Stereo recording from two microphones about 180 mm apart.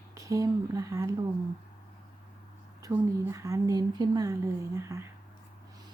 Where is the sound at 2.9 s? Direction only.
15° right (ahead or behind).